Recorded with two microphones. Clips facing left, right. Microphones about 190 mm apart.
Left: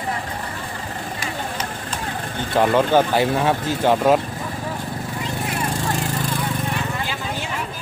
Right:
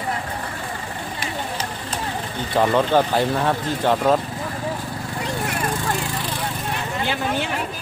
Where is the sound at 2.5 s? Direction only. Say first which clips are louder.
Left 1 dB; 5° left (ahead or behind).